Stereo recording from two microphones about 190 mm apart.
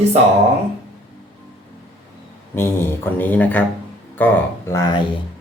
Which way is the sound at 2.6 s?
10° left (ahead or behind).